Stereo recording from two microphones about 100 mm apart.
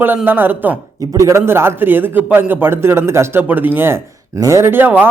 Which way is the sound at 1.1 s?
30° right (ahead or behind).